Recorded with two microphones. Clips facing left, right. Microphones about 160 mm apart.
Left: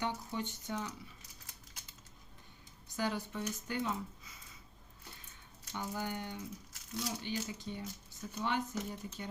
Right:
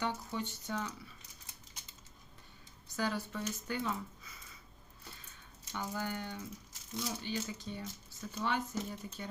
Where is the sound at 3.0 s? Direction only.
20° left (ahead or behind).